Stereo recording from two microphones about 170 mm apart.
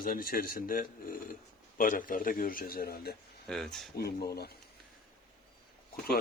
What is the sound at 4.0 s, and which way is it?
Speech, 70° left (ahead or behind).